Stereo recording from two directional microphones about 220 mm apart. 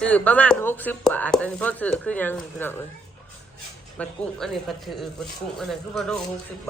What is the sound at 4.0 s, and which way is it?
Speech, centre (ahead or behind).